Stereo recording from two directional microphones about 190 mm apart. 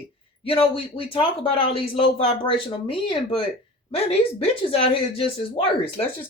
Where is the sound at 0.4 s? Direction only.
30° left (ahead or behind).